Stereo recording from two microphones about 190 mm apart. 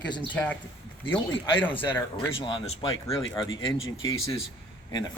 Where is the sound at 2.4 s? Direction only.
25° left (ahead or behind).